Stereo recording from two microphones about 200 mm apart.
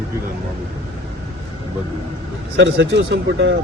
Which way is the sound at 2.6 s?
60° right (ahead or behind).